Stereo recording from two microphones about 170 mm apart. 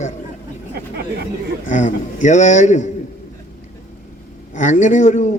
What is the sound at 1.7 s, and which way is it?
A man's voice, 45° left (ahead or behind).